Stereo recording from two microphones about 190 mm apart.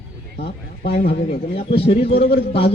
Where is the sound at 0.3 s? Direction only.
60° left (ahead or behind).